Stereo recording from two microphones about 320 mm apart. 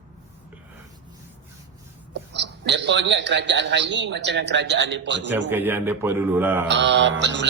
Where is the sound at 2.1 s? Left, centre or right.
Right.